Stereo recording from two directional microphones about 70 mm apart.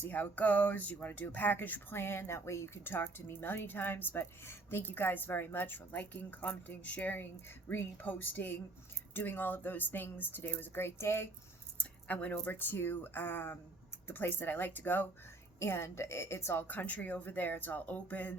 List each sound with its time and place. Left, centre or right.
0.0 s speech: left
11.8 s speech: left